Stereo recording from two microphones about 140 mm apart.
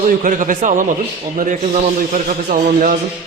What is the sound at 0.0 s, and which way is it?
A man's voice, 70° right (ahead or behind).